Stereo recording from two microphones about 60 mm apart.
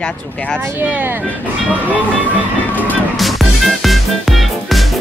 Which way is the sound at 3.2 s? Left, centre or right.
Centre.